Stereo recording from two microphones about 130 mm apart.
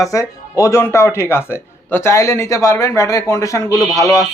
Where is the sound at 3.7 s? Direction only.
5° right (ahead or behind).